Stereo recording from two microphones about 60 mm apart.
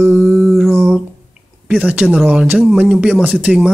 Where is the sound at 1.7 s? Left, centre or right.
Right.